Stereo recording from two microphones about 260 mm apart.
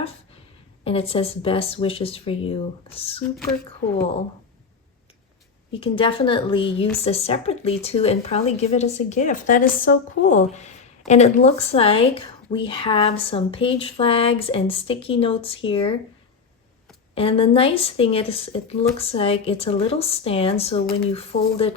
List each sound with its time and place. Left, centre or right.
0.9 s a woman's voice: left
5.7 s a woman's voice: left
17.2 s a woman's voice: left